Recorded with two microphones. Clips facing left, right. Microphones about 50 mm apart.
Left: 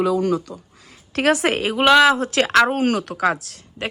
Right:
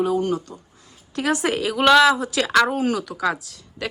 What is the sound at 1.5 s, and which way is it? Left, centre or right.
Speech, left.